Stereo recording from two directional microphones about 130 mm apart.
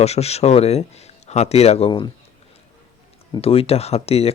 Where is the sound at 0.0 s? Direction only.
55° left (ahead or behind).